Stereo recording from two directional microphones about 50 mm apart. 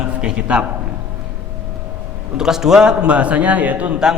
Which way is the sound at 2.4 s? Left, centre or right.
Centre.